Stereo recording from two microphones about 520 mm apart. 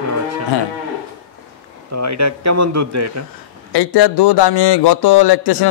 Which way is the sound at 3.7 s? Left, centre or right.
Left.